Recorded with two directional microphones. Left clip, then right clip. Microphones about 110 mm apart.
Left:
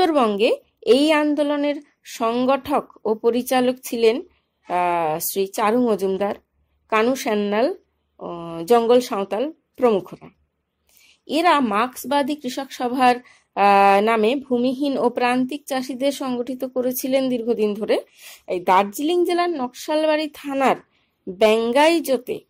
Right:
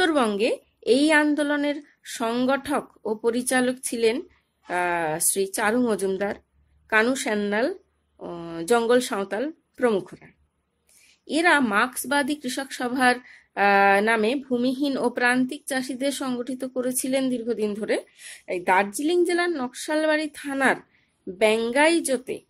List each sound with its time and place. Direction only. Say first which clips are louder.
0.0 s a woman's voice: left 4 dB; 25° left (ahead or behind)
1.2 s speech: left 3 dB; 20° left (ahead or behind)
11.2 s a woman's voice: left 3 dB; 30° left (ahead or behind)